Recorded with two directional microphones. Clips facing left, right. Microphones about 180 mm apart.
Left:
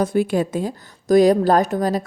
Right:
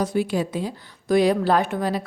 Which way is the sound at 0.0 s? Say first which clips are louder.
Left 4 dB; 50° left (ahead or behind).